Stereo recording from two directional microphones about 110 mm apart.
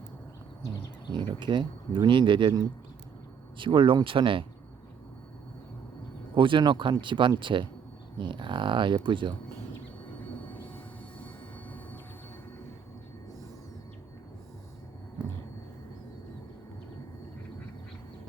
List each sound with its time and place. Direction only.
1.1 s speech: 45° right (ahead or behind)
3.6 s speech: 50° right (ahead or behind)
6.3 s speech: 50° right (ahead or behind)
10.4 s train: 15° left (ahead or behind)
15.2 s vehicle: 40° right (ahead or behind)